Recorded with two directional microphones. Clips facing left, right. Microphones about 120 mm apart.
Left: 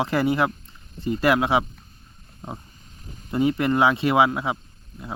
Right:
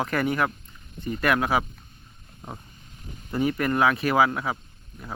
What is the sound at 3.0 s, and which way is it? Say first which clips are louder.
Speech: left 3 dB; 30° left (ahead or behind).